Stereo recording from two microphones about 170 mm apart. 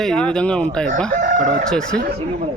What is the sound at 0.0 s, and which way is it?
A man's voice, 5° left (ahead or behind).